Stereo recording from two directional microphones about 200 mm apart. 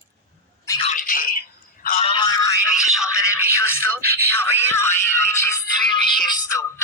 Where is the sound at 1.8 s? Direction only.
30° left (ahead or behind).